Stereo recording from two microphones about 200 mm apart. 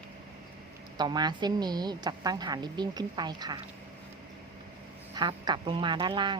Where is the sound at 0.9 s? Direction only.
20° right (ahead or behind).